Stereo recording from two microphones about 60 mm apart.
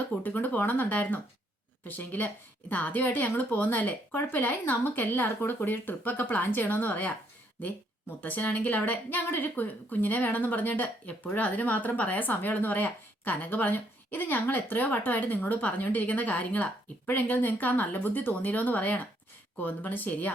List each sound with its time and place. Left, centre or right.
0.2 s speech: left
8.2 s speech: left